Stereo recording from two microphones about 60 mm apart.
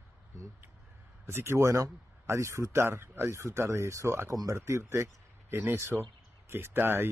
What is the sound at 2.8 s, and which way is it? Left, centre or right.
Speech, right.